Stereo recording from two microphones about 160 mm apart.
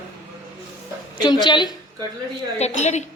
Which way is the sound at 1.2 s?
25° left (ahead or behind).